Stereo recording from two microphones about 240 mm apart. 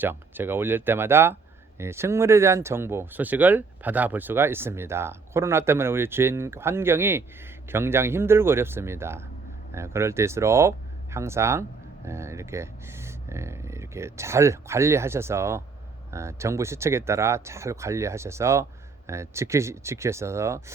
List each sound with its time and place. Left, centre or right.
0.0 s speech: centre